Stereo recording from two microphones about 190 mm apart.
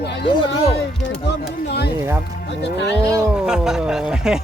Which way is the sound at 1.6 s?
60° left (ahead or behind).